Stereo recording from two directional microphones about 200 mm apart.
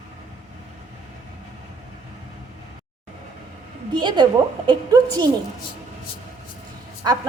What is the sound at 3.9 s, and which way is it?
A woman's voice, 20° right (ahead or behind).